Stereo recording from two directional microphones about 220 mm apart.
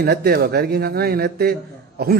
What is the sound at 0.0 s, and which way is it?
A man's voice, 45° right (ahead or behind).